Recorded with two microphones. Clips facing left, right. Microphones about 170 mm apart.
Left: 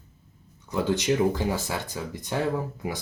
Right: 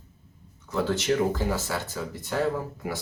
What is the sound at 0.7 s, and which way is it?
Speech, 15° left (ahead or behind).